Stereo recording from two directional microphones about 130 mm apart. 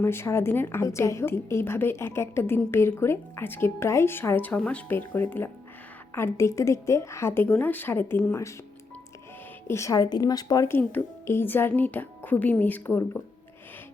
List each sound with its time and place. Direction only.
0.0 s a woman's voice: 20° left (ahead or behind)
9.6 s a woman's voice: 25° left (ahead or behind)